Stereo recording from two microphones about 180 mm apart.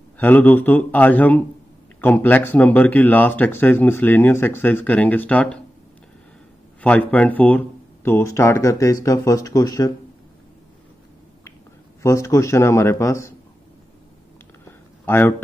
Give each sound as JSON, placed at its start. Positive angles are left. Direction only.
{"t": 0.2, "sound": "speech", "side_deg": 10}
{"t": 6.8, "sound": "speech", "side_deg": 10}
{"t": 12.0, "sound": "speech", "side_deg": 15}
{"t": 15.0, "sound": "speech", "side_deg": 10}